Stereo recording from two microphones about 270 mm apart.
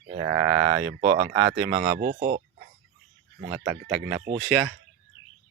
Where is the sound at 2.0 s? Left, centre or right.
Right.